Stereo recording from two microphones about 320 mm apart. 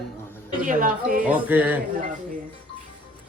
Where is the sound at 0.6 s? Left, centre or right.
Right.